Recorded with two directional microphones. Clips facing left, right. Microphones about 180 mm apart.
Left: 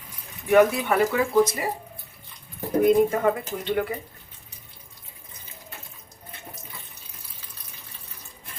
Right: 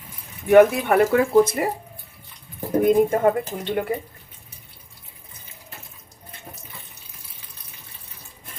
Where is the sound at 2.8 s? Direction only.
50° right (ahead or behind).